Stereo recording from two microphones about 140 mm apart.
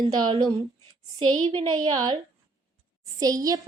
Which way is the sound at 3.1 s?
25° right (ahead or behind).